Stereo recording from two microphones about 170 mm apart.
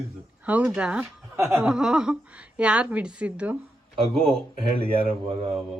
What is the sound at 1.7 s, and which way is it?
Speech, 5° right (ahead or behind).